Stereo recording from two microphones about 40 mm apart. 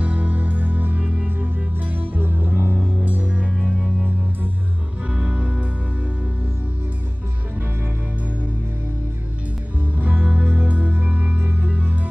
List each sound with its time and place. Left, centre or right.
0.0 s music: right
5.1 s music: right
9.9 s music: right